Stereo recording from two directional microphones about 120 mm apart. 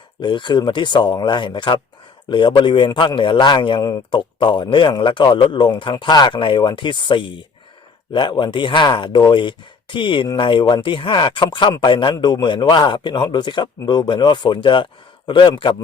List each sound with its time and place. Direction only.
0.2 s a man's voice: 40° left (ahead or behind)